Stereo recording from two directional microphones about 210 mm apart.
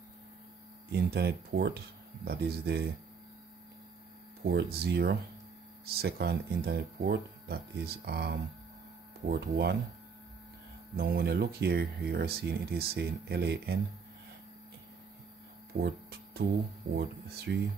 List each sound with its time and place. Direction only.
0.9 s speech: 50° right (ahead or behind)
4.4 s speech: 50° right (ahead or behind)
11.0 s speech: 50° right (ahead or behind)
15.8 s music: 50° right (ahead or behind)
16.9 s speech: 50° right (ahead or behind)